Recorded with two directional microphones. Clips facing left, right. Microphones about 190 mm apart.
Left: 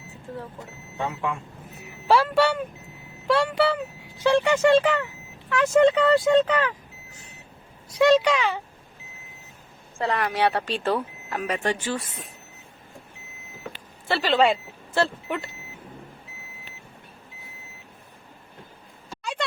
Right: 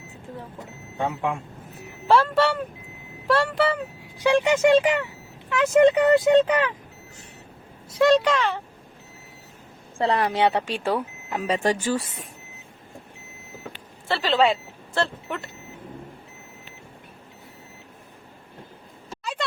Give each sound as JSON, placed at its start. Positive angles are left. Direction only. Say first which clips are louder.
{"t": 2.0, "sound": "speech", "louder": "even", "side_deg": 0}
{"t": 3.2, "sound": "a sound", "louder": "even", "side_deg": 0}
{"t": 4.2, "sound": "speech", "louder": "right 1 dB", "side_deg": -15}
{"t": 7.9, "sound": "speech", "louder": "even", "side_deg": 0}
{"t": 10.0, "sound": "speech", "louder": "right 2 dB", "side_deg": -30}
{"t": 11.4, "sound": "speech", "louder": "right 4 dB", "side_deg": -35}
{"t": 14.1, "sound": "speech", "louder": "even", "side_deg": 0}
{"t": 19.4, "sound": "a sound", "louder": "even", "side_deg": 0}